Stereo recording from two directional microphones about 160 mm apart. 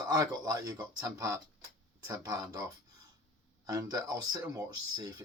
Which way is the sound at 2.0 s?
20° right (ahead or behind).